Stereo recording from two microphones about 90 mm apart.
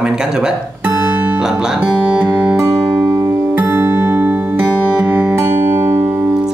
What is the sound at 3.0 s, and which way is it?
Music, 40° right (ahead or behind).